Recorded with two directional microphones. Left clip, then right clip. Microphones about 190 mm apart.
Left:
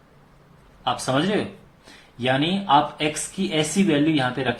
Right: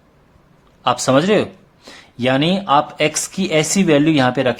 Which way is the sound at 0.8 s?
55° right (ahead or behind).